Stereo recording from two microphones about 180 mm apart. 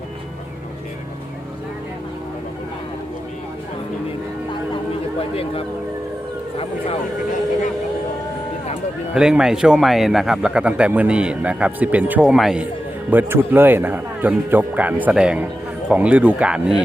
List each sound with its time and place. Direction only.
5.3 s speech: 30° left (ahead or behind)
9.1 s a man's voice: 5° right (ahead or behind)